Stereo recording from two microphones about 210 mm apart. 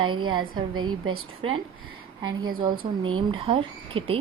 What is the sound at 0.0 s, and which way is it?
Speech, 20° right (ahead or behind).